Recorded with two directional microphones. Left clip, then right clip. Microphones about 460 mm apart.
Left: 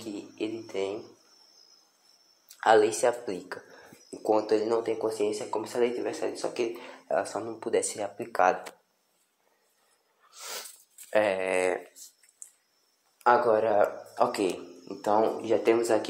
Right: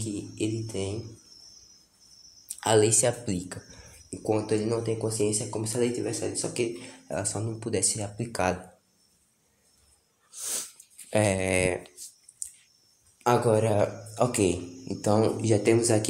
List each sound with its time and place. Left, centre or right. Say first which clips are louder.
0.4 s speech: even; right
2.6 s speech: left 1 dB; right
10.3 s sneeze: right 3 dB; centre
11.1 s speech: even; right
13.2 s speech: left 1 dB; right
14.4 s speech: right 3 dB; right
15.4 s speech: right 1 dB; right